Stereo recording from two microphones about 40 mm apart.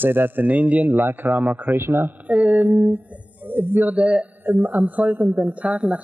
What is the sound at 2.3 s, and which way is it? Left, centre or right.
Music, right.